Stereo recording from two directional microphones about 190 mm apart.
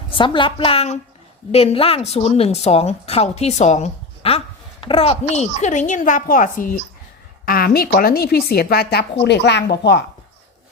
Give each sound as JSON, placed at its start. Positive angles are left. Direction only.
{"t": 0.1, "sound": "a woman's voice", "side_deg": 25}